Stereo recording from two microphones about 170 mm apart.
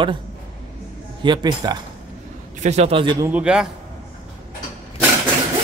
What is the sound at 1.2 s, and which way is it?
Speech, 25° right (ahead or behind).